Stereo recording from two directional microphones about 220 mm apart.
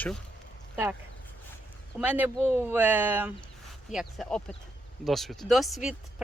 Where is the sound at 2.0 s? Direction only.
5° right (ahead or behind).